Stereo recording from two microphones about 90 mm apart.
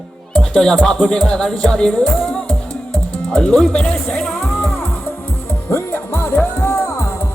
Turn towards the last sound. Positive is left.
turn(degrees=35)  # may be behind; listen again after turning